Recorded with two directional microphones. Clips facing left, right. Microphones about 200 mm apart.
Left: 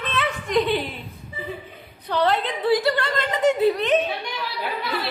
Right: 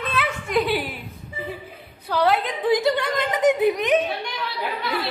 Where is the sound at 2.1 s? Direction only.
10° right (ahead or behind).